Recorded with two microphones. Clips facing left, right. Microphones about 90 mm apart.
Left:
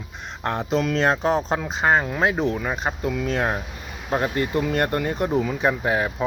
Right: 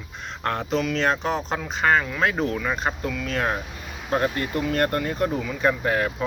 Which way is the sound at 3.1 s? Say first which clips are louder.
Left 2 dB; 25° left (ahead or behind).